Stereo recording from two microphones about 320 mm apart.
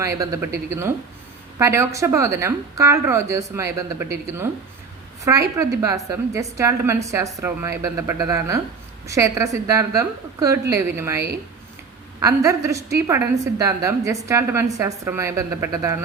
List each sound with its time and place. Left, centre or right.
0.0 s a woman's voice: centre
12.2 s a woman's voice: centre